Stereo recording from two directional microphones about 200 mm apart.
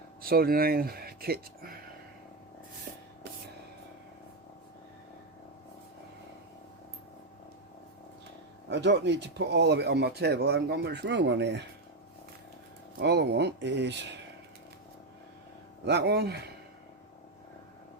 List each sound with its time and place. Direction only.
0.2 s speech: 45° right (ahead or behind)
8.7 s speech: 60° right (ahead or behind)
13.0 s speech: 55° right (ahead or behind)
15.9 s speech: 55° right (ahead or behind)